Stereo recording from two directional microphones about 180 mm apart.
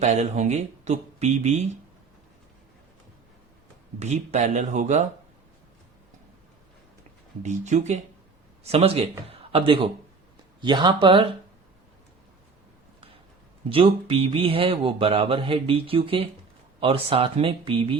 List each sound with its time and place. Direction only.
0.0 s speech: 40° right (ahead or behind)
4.0 s speech: 40° right (ahead or behind)
7.4 s a man's voice: 40° right (ahead or behind)
13.7 s speech: 30° right (ahead or behind)